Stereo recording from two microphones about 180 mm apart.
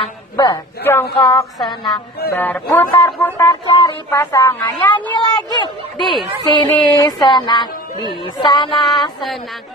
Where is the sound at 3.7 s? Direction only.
25° left (ahead or behind).